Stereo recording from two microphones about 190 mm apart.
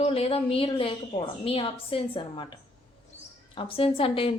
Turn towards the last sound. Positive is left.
turn(degrees=30)  # may be behind; listen again after turning